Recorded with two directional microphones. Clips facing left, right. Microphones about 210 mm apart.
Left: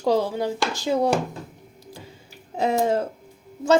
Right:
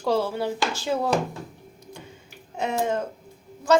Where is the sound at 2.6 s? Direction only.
35° left (ahead or behind).